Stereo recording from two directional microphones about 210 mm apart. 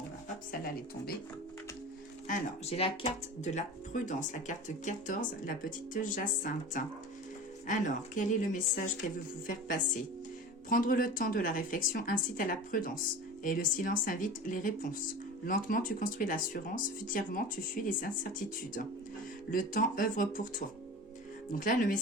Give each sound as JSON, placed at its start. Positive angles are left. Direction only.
{"t": 2.2, "sound": "speech", "side_deg": 40}
{"t": 2.7, "sound": "speech", "side_deg": 30}
{"t": 10.7, "sound": "speech", "side_deg": 45}